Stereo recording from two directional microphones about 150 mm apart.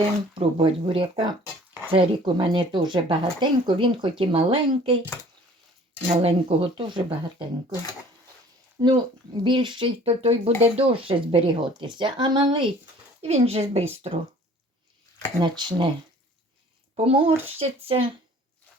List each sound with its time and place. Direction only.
0.3 s speech: 35° right (ahead or behind)
6.2 s speech: 40° right (ahead or behind)
8.8 s a woman's voice: 30° right (ahead or behind)
15.4 s speech: 30° right (ahead or behind)
16.9 s speech: 40° right (ahead or behind)